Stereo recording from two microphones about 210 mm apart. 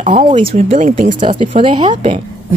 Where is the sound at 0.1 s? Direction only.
35° right (ahead or behind).